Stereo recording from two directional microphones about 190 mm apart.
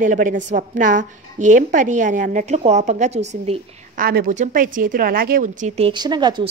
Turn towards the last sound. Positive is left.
turn(degrees=-25)  # may be behind; listen again after turning